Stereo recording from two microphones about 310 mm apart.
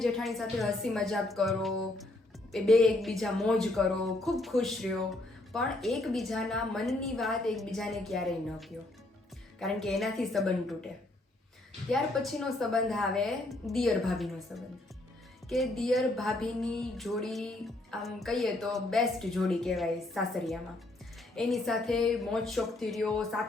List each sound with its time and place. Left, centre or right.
0.0 s a woman's voice: centre
11.9 s a woman's voice: centre